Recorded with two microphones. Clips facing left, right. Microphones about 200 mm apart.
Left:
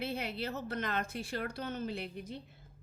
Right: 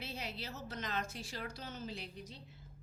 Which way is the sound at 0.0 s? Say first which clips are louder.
Left 8 dB; 55° left (ahead or behind).